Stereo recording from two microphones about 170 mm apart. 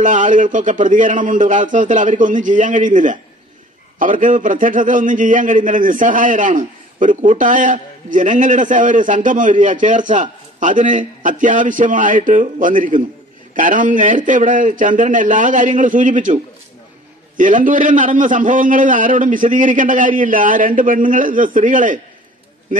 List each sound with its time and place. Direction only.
0.0 s a man's voice: 50° right (ahead or behind)
17.4 s a man's voice: 50° right (ahead or behind)